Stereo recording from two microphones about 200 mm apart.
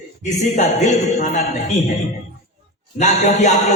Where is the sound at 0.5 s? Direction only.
35° left (ahead or behind).